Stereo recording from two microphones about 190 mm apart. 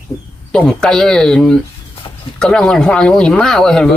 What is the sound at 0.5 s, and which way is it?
Speech, 5° left (ahead or behind).